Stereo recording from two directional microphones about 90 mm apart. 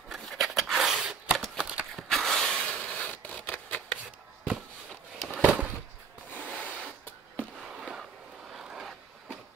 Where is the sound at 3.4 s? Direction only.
15° left (ahead or behind).